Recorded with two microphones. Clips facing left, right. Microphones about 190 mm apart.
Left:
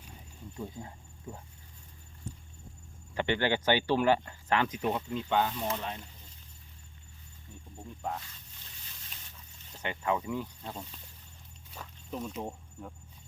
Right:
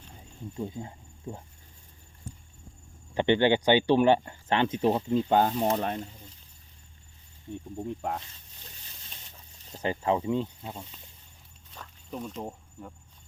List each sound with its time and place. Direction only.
0.5 s speech: 25° right (ahead or behind)
3.2 s speech: 25° right (ahead or behind); by 6.0 s 45° right (ahead or behind)
9.7 s speech: 35° right (ahead or behind)
10.6 s speech: 5° right (ahead or behind)
11.7 s snake: 5° left (ahead or behind)